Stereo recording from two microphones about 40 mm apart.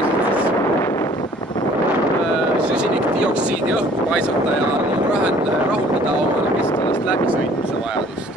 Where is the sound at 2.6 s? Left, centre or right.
Right.